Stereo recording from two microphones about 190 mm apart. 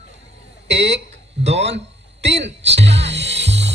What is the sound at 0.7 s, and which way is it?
Speech, 65° right (ahead or behind).